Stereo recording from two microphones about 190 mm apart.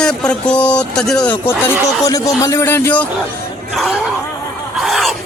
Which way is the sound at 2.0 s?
20° left (ahead or behind).